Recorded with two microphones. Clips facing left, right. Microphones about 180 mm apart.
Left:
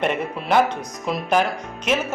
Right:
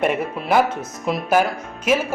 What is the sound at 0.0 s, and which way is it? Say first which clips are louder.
A man's voice: right 2 dB; 5° right (ahead or behind).